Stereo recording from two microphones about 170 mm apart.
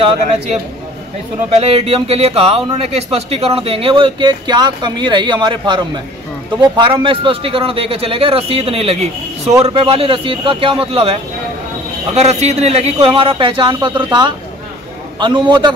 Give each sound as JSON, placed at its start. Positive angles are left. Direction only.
{"t": 0.0, "sound": "a man's voice", "side_deg": -35}